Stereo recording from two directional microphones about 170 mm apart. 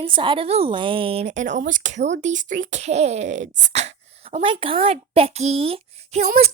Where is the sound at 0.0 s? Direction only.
30° right (ahead or behind).